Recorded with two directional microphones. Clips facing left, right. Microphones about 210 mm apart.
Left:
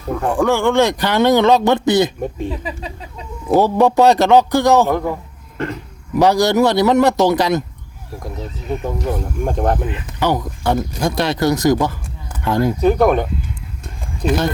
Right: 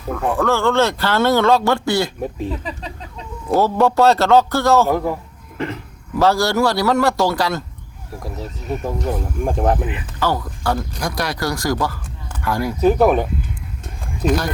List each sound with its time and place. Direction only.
0.1 s speech: centre (ahead or behind)
0.3 s speech: 15° left (ahead or behind)
2.2 s speech: centre (ahead or behind); by 4.9 s 15° left (ahead or behind)
4.9 s speech: 5° right (ahead or behind)
6.1 s a man's voice: 15° left (ahead or behind)
8.2 s speech: 5° right (ahead or behind)
10.2 s a man's voice: 20° left (ahead or behind)
12.8 s speech: 5° right (ahead or behind)
14.2 s speech: 5° right (ahead or behind)